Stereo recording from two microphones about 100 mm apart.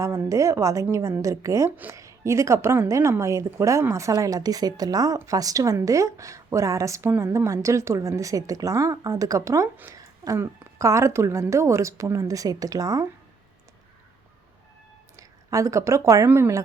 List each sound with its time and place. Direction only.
0.0 s a woman's voice: 30° right (ahead or behind)
1.7 s a woman's voice: 15° right (ahead or behind)
2.0 s a woman's voice: 30° right (ahead or behind)
15.1 s speech: 35° right (ahead or behind)